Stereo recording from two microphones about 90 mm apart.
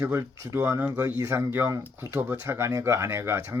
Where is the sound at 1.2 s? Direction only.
35° right (ahead or behind).